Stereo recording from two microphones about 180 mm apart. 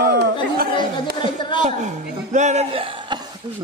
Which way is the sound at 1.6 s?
40° right (ahead or behind).